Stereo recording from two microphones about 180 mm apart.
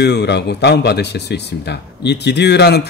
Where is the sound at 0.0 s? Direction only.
70° left (ahead or behind).